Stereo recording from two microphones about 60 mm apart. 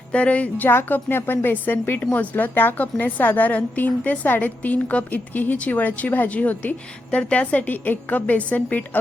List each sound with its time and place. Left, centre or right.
0.1 s a woman's voice: left